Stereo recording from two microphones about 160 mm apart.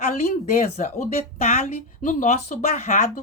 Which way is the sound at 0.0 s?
45° left (ahead or behind).